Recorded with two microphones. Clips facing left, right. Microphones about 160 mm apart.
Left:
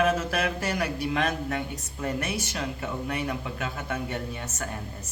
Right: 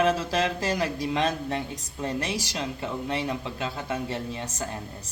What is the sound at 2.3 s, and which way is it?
Speech, 90° right.